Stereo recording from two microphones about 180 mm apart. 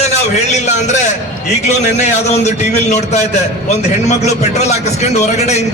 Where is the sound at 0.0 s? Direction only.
40° left (ahead or behind).